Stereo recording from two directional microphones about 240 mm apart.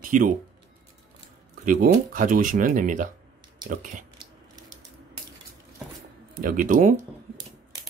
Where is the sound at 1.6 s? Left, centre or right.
Right.